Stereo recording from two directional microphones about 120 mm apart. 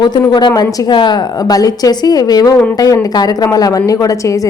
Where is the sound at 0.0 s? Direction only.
35° left (ahead or behind).